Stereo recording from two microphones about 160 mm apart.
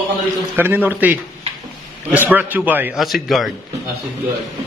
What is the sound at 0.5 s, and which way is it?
A man's voice, 10° right (ahead or behind).